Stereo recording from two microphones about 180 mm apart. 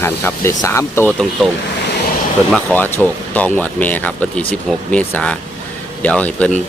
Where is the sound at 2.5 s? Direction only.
10° left (ahead or behind).